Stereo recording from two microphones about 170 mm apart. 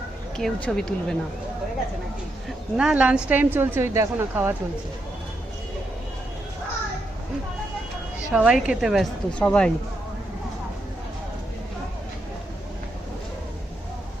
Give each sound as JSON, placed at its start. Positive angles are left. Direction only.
{"t": 0.3, "sound": "a woman's voice", "side_deg": 5}
{"t": 2.7, "sound": "a woman's voice", "side_deg": -5}
{"t": 8.3, "sound": "a woman's voice", "side_deg": -5}